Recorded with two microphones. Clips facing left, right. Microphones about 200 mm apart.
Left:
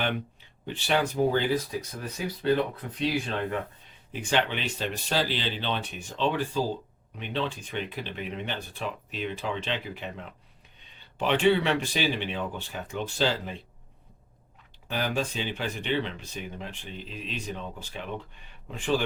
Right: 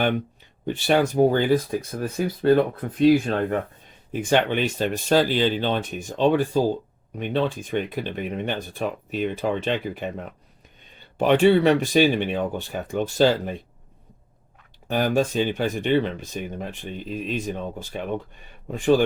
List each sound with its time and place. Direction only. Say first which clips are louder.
0.6 s speech: right 7 dB; 50° right (ahead or behind)
14.8 s speech: right 8 dB; 50° right (ahead or behind)